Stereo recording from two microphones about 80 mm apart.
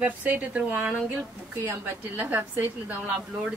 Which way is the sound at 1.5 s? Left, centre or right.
Right.